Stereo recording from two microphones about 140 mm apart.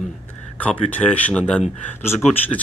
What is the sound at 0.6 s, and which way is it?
Speech, 10° left (ahead or behind).